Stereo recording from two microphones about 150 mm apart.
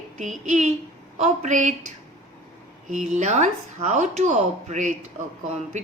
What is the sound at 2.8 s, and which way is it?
Speech, 55° right (ahead or behind).